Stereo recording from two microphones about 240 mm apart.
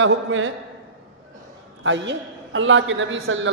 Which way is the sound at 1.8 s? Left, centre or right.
Right.